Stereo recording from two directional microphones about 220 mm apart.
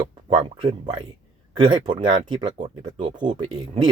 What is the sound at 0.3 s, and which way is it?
Speech, 25° right (ahead or behind).